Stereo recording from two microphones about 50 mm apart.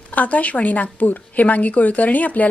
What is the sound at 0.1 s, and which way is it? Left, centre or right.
A woman's voice, left.